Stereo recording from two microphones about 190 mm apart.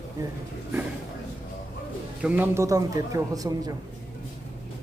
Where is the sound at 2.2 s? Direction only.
10° right (ahead or behind).